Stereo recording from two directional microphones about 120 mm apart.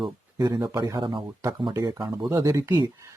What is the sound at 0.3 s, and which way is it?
Speech, 30° right (ahead or behind).